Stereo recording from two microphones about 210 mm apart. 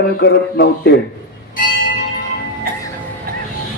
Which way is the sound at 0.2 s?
55° left (ahead or behind).